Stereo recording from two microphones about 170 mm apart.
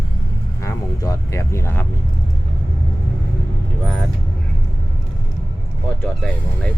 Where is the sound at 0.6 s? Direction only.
20° left (ahead or behind).